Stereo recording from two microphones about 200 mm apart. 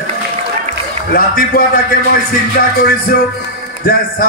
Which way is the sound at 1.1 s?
45° left (ahead or behind).